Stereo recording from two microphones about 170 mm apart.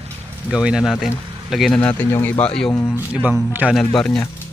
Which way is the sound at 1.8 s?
10° left (ahead or behind).